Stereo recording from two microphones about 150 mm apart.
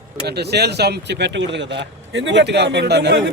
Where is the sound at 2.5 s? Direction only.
90° right.